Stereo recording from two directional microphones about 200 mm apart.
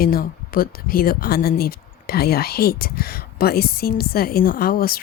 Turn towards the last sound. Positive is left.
turn(degrees=50)  # may be behind; listen again after turning